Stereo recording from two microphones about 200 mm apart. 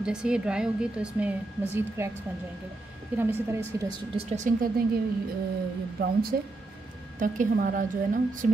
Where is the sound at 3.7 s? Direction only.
20° right (ahead or behind); by 4.8 s 40° right (ahead or behind).